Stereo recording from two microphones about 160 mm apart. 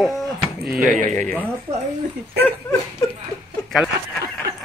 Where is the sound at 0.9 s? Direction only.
55° right (ahead or behind).